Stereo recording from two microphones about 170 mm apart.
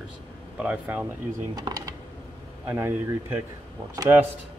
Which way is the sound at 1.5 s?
25° right (ahead or behind).